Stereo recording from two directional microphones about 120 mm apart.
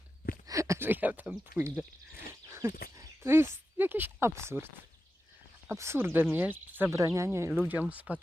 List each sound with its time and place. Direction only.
0.4 s speech: 25° right (ahead or behind)
2.5 s a sound: 20° right (ahead or behind)
5.6 s speech: 20° right (ahead or behind)